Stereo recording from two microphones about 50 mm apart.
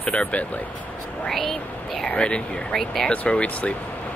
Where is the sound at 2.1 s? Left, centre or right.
Left.